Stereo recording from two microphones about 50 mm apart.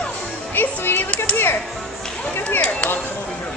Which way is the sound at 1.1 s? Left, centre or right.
Left.